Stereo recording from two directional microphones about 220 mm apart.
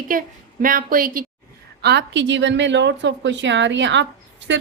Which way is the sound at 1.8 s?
50° right (ahead or behind).